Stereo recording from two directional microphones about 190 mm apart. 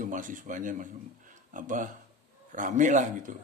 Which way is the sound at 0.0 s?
45° right (ahead or behind).